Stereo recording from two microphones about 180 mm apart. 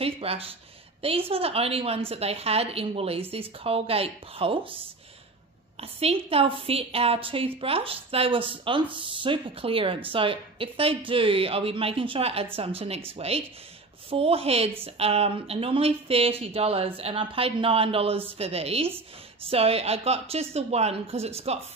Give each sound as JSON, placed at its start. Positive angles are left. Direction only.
{"t": 0.0, "sound": "a woman's voice", "side_deg": -35}
{"t": 5.8, "sound": "a woman's voice", "side_deg": -35}